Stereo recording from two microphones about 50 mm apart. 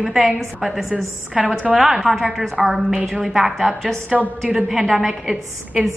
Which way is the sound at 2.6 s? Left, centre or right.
Centre.